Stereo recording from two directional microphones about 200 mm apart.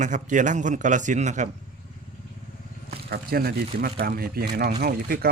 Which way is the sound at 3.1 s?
50° right (ahead or behind).